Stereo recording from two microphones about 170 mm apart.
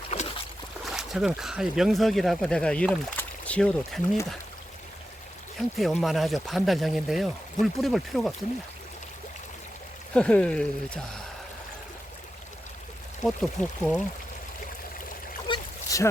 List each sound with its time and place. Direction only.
0.1 s boat: 45° left (ahead or behind)
0.9 s speech: centre (ahead or behind)
5.5 s speech: centre (ahead or behind)
10.2 s speech: 5° left (ahead or behind)
13.2 s speech: 5° left (ahead or behind)
15.4 s boat: 25° left (ahead or behind)